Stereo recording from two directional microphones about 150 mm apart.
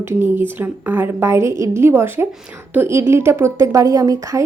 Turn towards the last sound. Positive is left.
turn(degrees=-20)  # may be behind; listen again after turning